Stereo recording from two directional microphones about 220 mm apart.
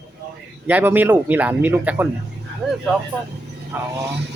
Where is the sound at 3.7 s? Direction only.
10° right (ahead or behind).